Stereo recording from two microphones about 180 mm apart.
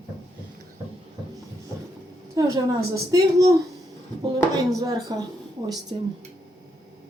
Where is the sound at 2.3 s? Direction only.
20° right (ahead or behind).